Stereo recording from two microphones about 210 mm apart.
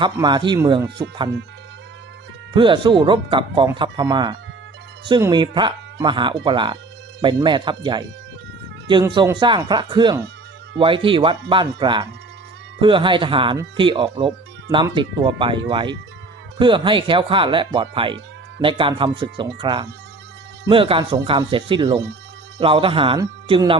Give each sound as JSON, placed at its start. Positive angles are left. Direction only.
{"t": 0.0, "sound": "speech", "side_deg": -20}
{"t": 2.6, "sound": "speech", "side_deg": -25}